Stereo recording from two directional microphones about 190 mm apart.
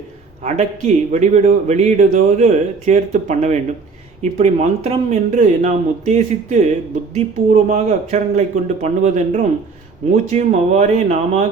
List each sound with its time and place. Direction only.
0.4 s a man's voice: 35° right (ahead or behind)